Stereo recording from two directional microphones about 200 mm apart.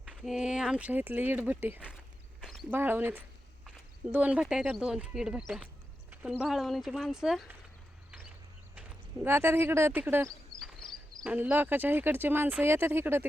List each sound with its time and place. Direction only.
0.0 s speech: 5° right (ahead or behind)
8.7 s speech: 10° right (ahead or behind)
10.2 s speech: centre (ahead or behind)